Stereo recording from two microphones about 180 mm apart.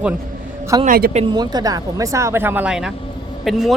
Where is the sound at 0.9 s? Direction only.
55° right (ahead or behind).